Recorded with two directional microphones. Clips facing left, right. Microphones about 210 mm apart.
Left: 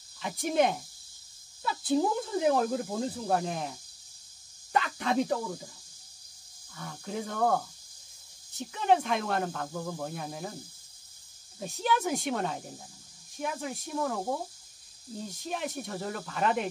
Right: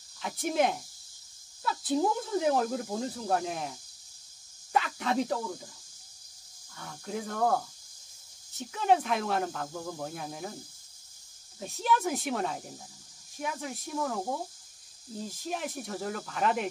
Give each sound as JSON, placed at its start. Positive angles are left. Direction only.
{"t": 0.2, "sound": "speech", "side_deg": 0}
{"t": 4.7, "sound": "speech", "side_deg": 0}
{"t": 6.8, "sound": "speech", "side_deg": 0}
{"t": 11.6, "sound": "speech", "side_deg": 0}